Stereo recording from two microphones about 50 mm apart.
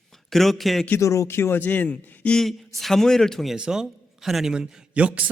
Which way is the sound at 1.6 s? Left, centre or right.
Left.